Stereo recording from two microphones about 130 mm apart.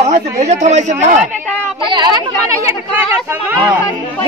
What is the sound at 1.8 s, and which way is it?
Speech, 35° right (ahead or behind).